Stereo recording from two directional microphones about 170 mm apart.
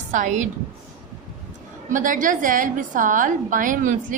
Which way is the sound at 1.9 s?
50° right (ahead or behind).